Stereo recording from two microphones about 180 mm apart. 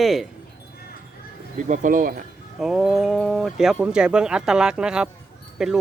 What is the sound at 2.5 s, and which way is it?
Speech, 5° right (ahead or behind).